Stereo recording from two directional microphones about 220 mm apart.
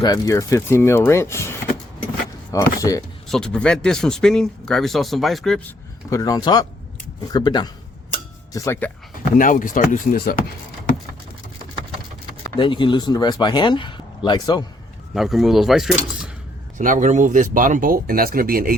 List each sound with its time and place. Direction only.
0.0 s speech: 15° left (ahead or behind)
3.2 s speech: centre (ahead or behind)
9.3 s speech: 35° left (ahead or behind)
12.5 s speech: 20° left (ahead or behind)
15.1 s speech: centre (ahead or behind)
16.7 s speech: 35° right (ahead or behind)